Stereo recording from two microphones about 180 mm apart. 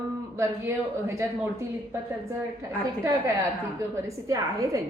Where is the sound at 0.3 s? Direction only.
15° right (ahead or behind).